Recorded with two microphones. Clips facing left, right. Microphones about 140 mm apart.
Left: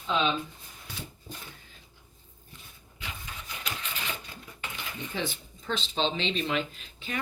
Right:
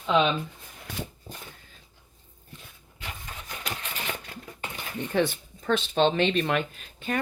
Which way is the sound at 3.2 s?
45° right (ahead or behind).